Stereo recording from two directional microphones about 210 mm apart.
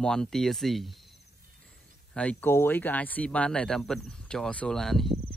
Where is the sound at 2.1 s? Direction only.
10° left (ahead or behind).